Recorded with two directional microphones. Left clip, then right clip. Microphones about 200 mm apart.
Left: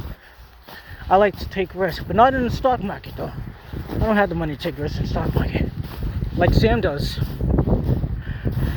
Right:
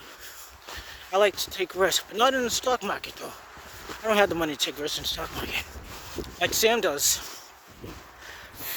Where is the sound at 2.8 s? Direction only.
40° right (ahead or behind).